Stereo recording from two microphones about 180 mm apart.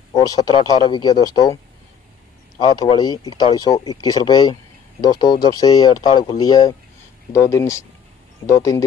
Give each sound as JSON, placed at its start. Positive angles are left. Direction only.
{"t": 0.1, "sound": "speech", "side_deg": 20}
{"t": 2.6, "sound": "speech", "side_deg": 25}